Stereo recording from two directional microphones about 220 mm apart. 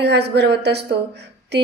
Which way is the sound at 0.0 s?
50° right (ahead or behind).